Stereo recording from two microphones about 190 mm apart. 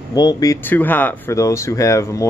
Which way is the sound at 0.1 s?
20° left (ahead or behind).